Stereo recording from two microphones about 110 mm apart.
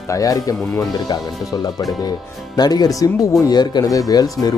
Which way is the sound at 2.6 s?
35° left (ahead or behind).